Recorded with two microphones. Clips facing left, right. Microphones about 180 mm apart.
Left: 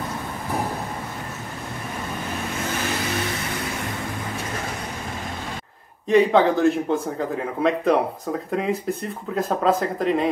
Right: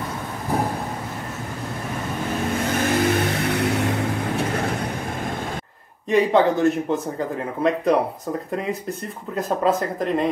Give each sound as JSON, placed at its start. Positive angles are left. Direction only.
{"t": 2.8, "sound": "vehicle", "side_deg": -55}
{"t": 6.0, "sound": "speech", "side_deg": 0}